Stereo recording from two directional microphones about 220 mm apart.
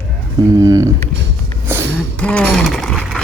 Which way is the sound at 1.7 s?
10° right (ahead or behind).